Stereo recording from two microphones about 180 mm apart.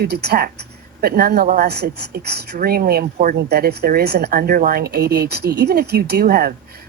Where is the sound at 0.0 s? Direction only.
65° right (ahead or behind).